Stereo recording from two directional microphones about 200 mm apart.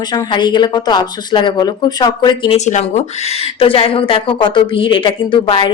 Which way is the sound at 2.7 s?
35° left (ahead or behind).